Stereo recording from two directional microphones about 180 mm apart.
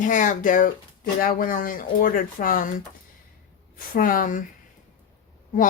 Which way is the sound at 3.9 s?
50° left (ahead or behind).